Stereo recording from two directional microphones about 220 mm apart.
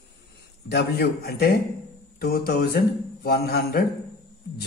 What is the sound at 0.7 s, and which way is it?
Speech, 45° left (ahead or behind).